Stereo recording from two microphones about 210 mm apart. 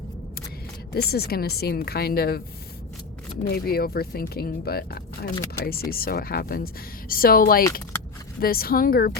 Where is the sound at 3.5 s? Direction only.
45° left (ahead or behind).